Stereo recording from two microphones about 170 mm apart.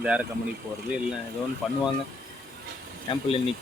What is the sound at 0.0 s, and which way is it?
Speech, 5° right (ahead or behind).